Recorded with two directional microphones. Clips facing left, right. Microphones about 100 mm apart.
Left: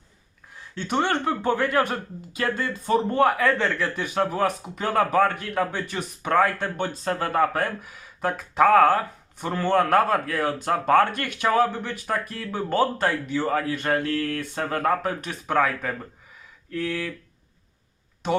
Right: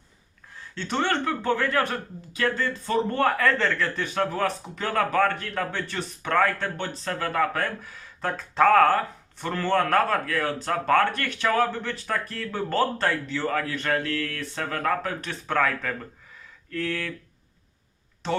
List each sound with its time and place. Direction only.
0.8 s speech: 15° left (ahead or behind)
18.2 s speech: 15° left (ahead or behind)